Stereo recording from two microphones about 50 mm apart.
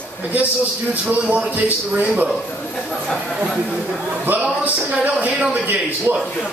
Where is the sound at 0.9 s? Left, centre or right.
Right.